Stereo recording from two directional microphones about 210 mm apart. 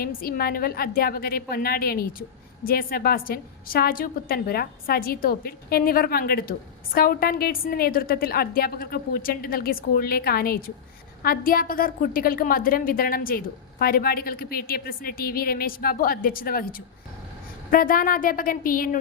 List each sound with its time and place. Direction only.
0.0 s a woman's voice: 45° left (ahead or behind)
17.7 s a woman's voice: 40° left (ahead or behind)